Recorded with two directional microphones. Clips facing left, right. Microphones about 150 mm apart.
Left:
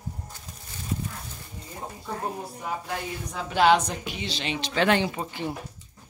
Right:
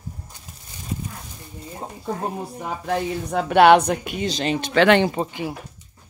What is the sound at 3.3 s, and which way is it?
Speech, 65° right (ahead or behind).